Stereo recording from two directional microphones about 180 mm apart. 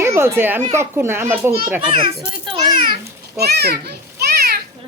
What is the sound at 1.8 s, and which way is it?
A woman's voice, 30° right (ahead or behind).